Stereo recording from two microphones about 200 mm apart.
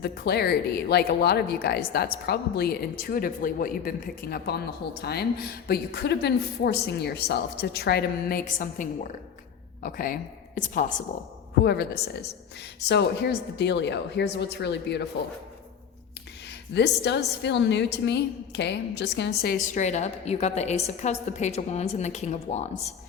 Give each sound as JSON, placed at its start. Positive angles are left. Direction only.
{"t": 0.0, "sound": "speech", "side_deg": 55}
{"t": 11.6, "sound": "a woman's voice", "side_deg": 55}
{"t": 16.5, "sound": "a woman's voice", "side_deg": 60}